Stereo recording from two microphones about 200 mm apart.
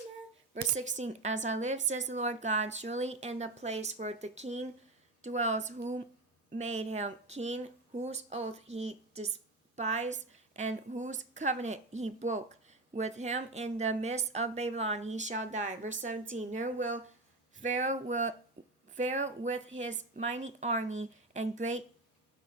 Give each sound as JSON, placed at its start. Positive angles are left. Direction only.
{"t": 0.9, "sound": "speech", "side_deg": -35}
{"t": 20.8, "sound": "speech", "side_deg": -80}
{"t": 21.3, "sound": "speech", "side_deg": -35}